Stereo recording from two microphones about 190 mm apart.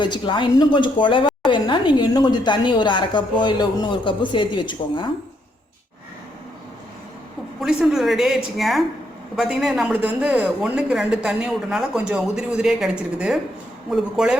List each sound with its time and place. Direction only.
0.0 s speech: 25° left (ahead or behind)
7.6 s a woman's voice: 5° right (ahead or behind)